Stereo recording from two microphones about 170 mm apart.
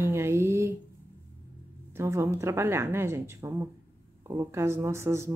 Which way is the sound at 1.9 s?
15° right (ahead or behind).